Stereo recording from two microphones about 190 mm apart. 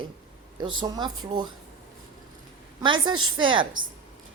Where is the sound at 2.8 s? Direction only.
25° right (ahead or behind).